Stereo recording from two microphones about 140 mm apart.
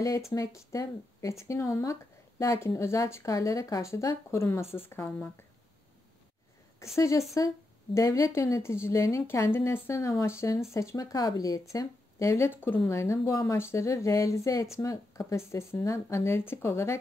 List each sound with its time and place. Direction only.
0.3 s speech: 20° left (ahead or behind)
7.0 s speech: 20° left (ahead or behind)